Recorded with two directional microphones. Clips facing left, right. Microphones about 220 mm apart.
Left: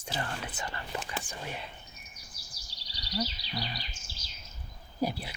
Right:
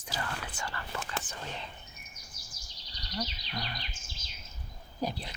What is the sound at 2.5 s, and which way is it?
Bird, 35° left (ahead or behind).